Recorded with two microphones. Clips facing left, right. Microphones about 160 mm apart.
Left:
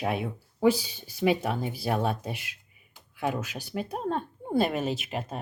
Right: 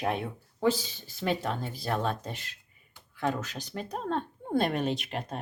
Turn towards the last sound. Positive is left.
turn(degrees=5)  # may be behind; listen again after turning